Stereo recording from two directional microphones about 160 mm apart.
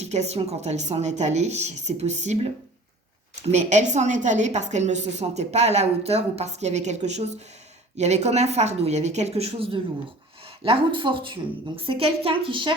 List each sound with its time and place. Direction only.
0.0 s a woman's voice: 45° right (ahead or behind)